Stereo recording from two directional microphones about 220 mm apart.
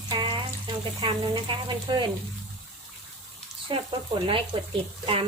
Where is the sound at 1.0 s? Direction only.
25° right (ahead or behind).